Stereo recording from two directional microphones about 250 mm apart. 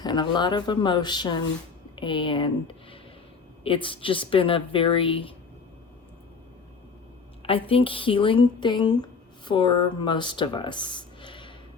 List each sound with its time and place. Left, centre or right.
0.0 s speech: centre
7.4 s speech: left